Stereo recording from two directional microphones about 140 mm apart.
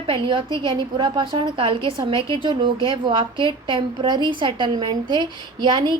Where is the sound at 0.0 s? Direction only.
35° right (ahead or behind).